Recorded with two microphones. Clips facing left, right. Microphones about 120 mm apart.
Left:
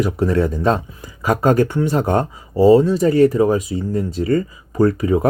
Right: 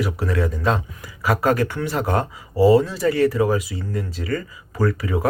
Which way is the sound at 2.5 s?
20° left (ahead or behind).